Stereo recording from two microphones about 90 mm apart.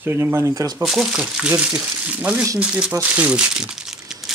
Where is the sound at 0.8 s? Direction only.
5° right (ahead or behind).